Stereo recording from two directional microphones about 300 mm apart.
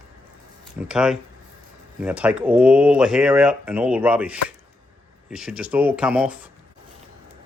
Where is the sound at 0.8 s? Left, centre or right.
Centre.